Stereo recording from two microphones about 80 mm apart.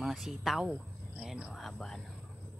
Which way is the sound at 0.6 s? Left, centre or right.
Centre.